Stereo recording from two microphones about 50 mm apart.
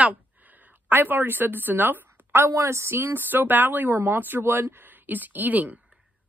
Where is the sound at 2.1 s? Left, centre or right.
Right.